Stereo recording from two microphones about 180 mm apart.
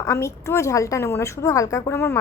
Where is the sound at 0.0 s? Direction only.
15° left (ahead or behind).